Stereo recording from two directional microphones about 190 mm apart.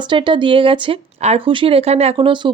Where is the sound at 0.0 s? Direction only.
25° right (ahead or behind).